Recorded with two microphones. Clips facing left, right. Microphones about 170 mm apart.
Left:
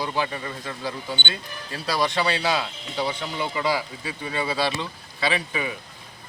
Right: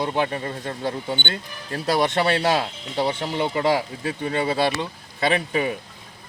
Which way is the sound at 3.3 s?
55° right (ahead or behind).